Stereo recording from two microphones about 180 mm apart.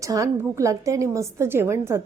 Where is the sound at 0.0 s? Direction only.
20° right (ahead or behind).